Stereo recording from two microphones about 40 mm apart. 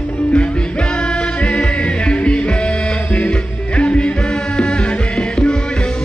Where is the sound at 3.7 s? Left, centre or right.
Left.